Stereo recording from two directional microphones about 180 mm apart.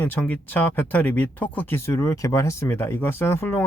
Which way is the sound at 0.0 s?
10° left (ahead or behind).